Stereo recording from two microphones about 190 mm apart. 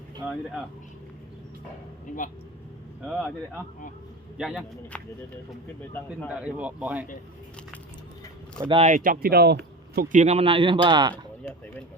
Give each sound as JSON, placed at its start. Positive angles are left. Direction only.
{"t": 0.2, "sound": "speech", "side_deg": -5}
{"t": 2.1, "sound": "speech", "side_deg": 45}
{"t": 3.0, "sound": "speech", "side_deg": -5}
{"t": 4.4, "sound": "speech", "side_deg": -5}
{"t": 6.2, "sound": "speech", "side_deg": -5}
{"t": 8.7, "sound": "speech", "side_deg": -35}
{"t": 9.0, "sound": "speech", "side_deg": -50}